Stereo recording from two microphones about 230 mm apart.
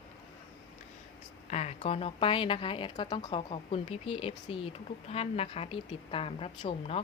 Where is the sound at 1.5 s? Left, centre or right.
Left.